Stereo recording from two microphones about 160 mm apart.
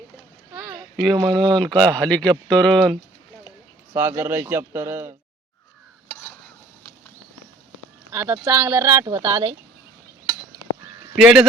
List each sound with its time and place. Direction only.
1.0 s speech: 5° left (ahead or behind)
3.9 s speech: 15° right (ahead or behind)
8.1 s speech: 10° right (ahead or behind)
11.1 s speech: 5° right (ahead or behind)